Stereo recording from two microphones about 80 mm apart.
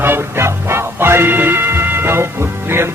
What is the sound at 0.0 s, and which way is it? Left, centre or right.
Music, right.